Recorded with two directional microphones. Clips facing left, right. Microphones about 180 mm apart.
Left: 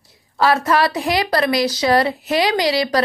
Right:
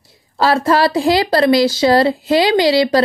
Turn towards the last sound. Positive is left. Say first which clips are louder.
# right 5 dB
turn(degrees=-30)  # may be behind; listen again after turning